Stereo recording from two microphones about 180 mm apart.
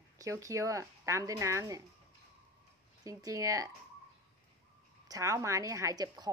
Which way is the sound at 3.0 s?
20° right (ahead or behind).